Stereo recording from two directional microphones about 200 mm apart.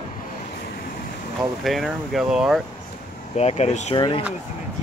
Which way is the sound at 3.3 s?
30° left (ahead or behind).